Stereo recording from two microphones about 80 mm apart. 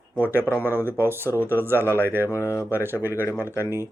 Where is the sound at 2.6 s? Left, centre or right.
Right.